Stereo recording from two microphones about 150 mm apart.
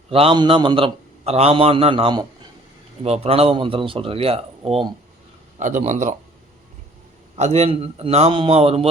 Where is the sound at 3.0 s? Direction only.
45° right (ahead or behind).